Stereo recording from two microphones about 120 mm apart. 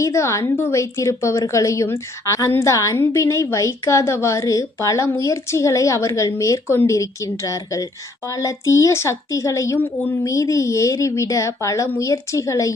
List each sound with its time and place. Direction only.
0.0 s a woman's voice: 25° left (ahead or behind)